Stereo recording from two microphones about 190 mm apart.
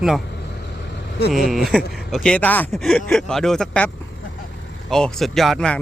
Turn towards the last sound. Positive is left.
turn(degrees=5)  # may be behind; listen again after turning